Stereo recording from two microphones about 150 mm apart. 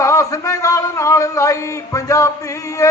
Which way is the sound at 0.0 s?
20° left (ahead or behind).